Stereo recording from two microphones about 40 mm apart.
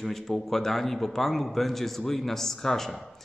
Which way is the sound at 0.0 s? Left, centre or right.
Centre.